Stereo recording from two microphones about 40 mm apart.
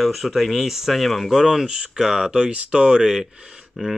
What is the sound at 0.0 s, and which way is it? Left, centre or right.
Speech, centre.